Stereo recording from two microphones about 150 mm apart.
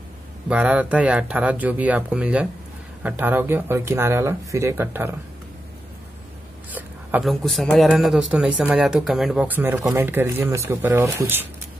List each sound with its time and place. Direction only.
0.5 s speech: 10° right (ahead or behind)
6.7 s a sound: 10° right (ahead or behind)
7.2 s speech: centre (ahead or behind); by 11.4 s 15° right (ahead or behind)